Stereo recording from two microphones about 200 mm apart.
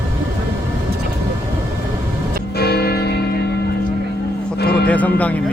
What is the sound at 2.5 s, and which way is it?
Music, 50° left (ahead or behind).